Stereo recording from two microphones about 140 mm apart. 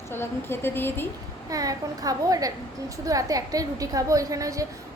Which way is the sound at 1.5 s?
25° right (ahead or behind).